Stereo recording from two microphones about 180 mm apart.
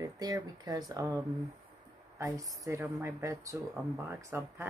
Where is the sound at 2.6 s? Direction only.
15° right (ahead or behind).